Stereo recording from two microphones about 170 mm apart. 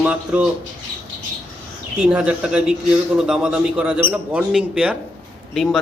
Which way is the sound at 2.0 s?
5° right (ahead or behind).